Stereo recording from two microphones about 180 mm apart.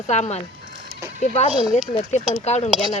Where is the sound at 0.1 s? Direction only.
40° left (ahead or behind).